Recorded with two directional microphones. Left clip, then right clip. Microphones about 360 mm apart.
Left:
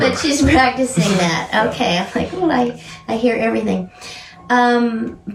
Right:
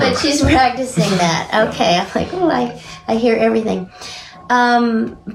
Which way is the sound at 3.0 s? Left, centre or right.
Centre.